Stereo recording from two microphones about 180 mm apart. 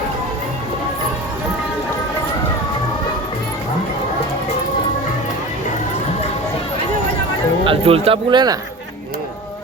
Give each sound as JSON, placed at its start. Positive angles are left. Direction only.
{"t": 7.6, "sound": "speech", "side_deg": -30}